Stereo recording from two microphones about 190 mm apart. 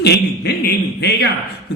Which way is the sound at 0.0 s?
60° left (ahead or behind).